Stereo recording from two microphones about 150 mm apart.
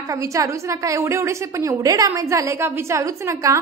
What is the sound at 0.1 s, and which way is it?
A woman's voice, 20° right (ahead or behind).